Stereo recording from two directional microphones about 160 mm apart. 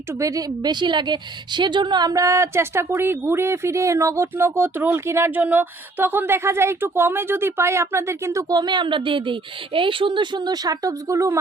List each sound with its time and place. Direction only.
0.1 s a woman's voice: 20° right (ahead or behind)